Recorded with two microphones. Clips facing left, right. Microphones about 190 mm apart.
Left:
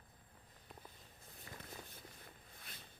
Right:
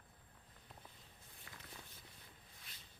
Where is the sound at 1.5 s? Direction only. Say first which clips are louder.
Left 6 dB; 30° left (ahead or behind).